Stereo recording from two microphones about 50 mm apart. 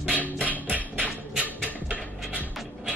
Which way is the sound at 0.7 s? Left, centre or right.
Right.